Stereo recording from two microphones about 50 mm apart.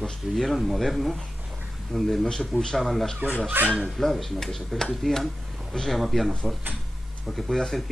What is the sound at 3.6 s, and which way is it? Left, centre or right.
Speech, right.